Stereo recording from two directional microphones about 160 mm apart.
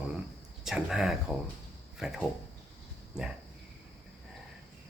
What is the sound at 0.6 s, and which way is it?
Speech, 5° right (ahead or behind).